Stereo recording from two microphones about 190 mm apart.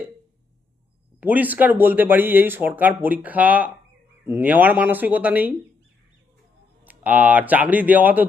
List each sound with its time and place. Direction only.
1.2 s speech: 10° right (ahead or behind)
6.8 s speech: 10° right (ahead or behind)